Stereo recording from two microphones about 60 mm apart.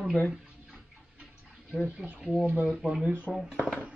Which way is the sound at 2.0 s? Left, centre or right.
Centre.